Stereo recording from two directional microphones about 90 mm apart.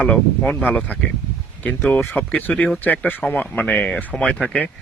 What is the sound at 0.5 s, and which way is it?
A man's voice, 20° left (ahead or behind).